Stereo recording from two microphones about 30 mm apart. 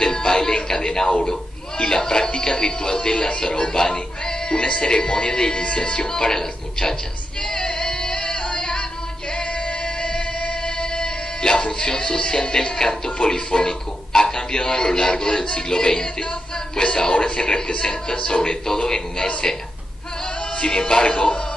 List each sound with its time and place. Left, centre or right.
0.0 s music: left
0.7 s television: centre
1.9 s music: centre
2.6 s speech: left
3.3 s music: left
4.5 s speech: left; by 7.0 s centre
7.4 s music: left
12.7 s speech: left
21.0 s music: left